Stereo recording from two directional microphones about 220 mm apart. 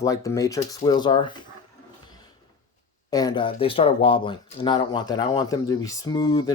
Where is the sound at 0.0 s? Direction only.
15° left (ahead or behind).